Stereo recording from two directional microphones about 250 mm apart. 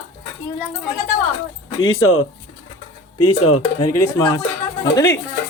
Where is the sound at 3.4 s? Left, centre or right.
Left.